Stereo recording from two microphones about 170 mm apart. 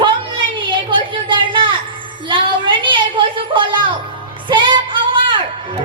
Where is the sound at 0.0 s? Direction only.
30° right (ahead or behind).